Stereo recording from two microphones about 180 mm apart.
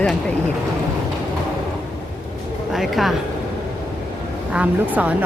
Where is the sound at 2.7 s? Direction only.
Centre (ahead or behind).